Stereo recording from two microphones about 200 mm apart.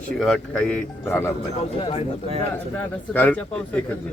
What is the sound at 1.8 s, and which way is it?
Speech, 30° left (ahead or behind).